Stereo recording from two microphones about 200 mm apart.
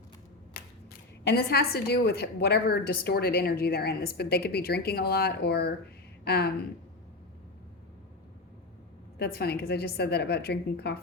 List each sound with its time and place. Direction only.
1.3 s a woman's voice: 50° left (ahead or behind)
9.1 s a woman's voice: 55° left (ahead or behind)